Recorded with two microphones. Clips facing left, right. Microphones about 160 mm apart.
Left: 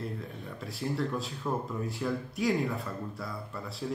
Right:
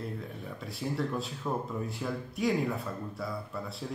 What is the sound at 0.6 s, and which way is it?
Speech, centre (ahead or behind).